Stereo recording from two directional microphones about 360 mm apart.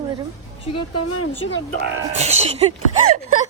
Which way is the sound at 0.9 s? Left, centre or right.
Left.